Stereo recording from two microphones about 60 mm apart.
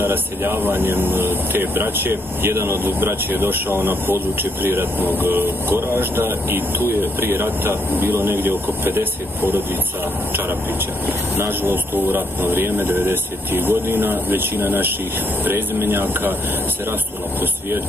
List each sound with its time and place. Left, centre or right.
0.0 s speech: right
2.8 s speech: right
11.3 s speech: right